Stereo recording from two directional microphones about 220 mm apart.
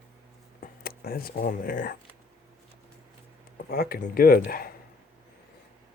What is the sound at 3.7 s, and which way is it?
Speech, 45° left (ahead or behind).